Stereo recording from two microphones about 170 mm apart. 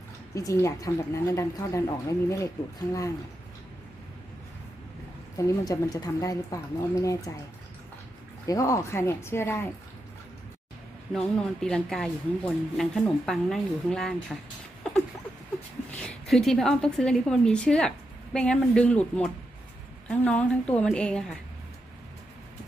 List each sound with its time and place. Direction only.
0.3 s a woman's voice: 20° left (ahead or behind)
5.7 s speech: 20° left (ahead or behind)
8.5 s a woman's voice: 20° left (ahead or behind)
11.1 s a woman's voice: 5° left (ahead or behind)
14.8 s rodents: 5° left (ahead or behind)
16.1 s a woman's voice: centre (ahead or behind)